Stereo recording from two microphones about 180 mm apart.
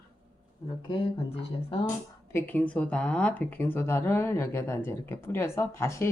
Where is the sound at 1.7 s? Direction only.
30° left (ahead or behind).